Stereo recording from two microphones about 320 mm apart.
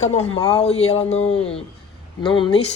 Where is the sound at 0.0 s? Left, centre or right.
Centre.